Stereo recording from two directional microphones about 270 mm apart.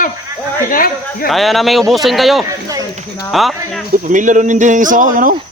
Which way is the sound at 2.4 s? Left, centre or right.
Centre.